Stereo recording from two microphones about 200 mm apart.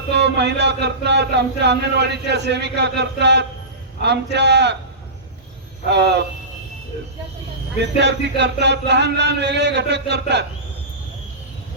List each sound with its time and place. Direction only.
0.1 s speech: 60° right (ahead or behind)
5.9 s speech: 55° right (ahead or behind)
7.8 s speech: 60° right (ahead or behind)